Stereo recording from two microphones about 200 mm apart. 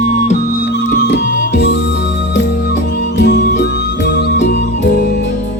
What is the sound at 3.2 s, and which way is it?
Music, 45° left (ahead or behind).